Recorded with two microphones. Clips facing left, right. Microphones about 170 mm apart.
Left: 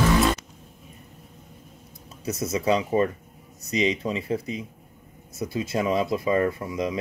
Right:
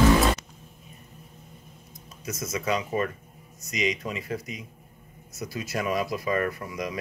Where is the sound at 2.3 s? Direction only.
30° left (ahead or behind).